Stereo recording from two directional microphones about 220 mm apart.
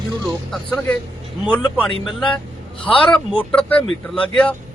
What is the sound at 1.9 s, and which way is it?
Speech, 25° left (ahead or behind).